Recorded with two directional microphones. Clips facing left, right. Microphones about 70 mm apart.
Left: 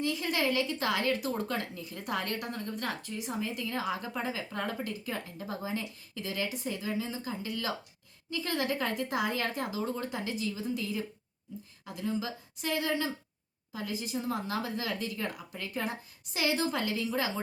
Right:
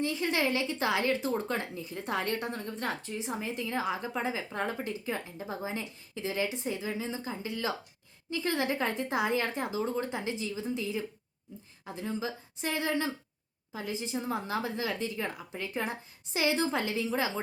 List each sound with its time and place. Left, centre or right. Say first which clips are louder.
0.0 s a woman's voice: right 1 dB; right